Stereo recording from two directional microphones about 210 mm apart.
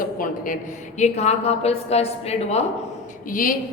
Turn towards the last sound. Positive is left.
turn(degrees=40)  # may be behind; listen again after turning